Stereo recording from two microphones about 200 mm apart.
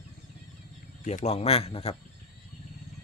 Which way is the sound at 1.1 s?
35° left (ahead or behind).